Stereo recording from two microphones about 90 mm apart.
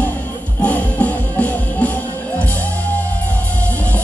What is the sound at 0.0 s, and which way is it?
Music, 15° left (ahead or behind).